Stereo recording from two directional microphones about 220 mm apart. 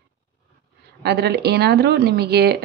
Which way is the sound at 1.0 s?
50° right (ahead or behind).